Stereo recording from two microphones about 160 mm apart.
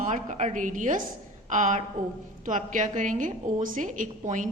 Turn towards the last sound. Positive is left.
turn(degrees=-55)  # may be behind; listen again after turning